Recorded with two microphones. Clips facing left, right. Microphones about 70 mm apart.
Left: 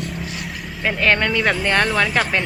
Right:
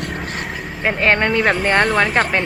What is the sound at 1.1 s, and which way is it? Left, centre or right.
Speech, right.